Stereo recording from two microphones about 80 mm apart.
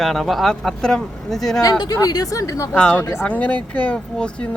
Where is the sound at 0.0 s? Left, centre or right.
Centre.